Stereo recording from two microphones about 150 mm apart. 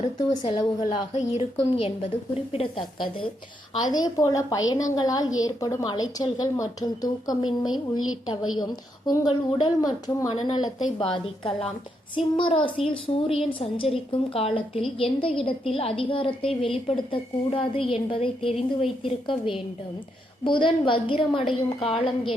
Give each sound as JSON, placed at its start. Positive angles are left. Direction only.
{"t": 0.0, "sound": "a woman's voice", "side_deg": 40}
{"t": 0.6, "sound": "a woman's voice", "side_deg": 25}
{"t": 1.1, "sound": "a woman's voice", "side_deg": 40}